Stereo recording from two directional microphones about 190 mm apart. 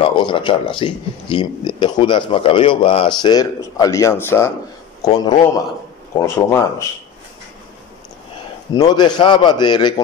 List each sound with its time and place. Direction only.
0.0 s a man's voice: 25° left (ahead or behind)
8.7 s speech: 20° left (ahead or behind)